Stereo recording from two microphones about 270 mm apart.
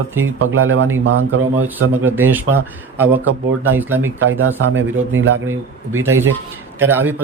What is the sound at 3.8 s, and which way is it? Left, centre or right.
Speech, centre.